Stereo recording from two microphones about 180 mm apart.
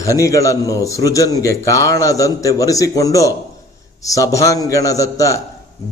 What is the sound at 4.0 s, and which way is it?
A man's voice, 20° left (ahead or behind).